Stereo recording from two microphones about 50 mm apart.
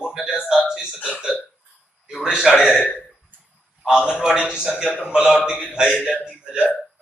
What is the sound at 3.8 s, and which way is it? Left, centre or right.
Speech, centre.